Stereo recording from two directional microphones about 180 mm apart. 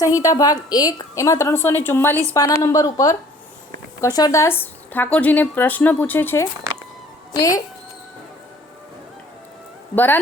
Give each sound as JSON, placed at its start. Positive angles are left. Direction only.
{"t": 0.2, "sound": "a woman's voice", "side_deg": 20}
{"t": 9.9, "sound": "a woman's voice", "side_deg": 10}